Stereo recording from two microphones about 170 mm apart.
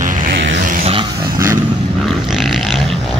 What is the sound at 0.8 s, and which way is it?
Dog, 35° right (ahead or behind).